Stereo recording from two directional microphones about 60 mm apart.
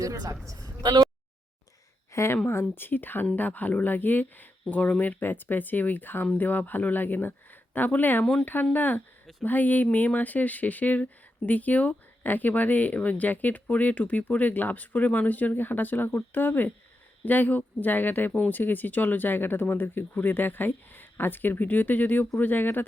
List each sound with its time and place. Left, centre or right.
0.0 s a man's voice: right
2.1 s speech: left
8.2 s speech: centre
8.7 s speech: left